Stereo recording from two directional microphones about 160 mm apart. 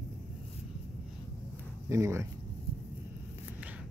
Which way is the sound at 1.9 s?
20° right (ahead or behind).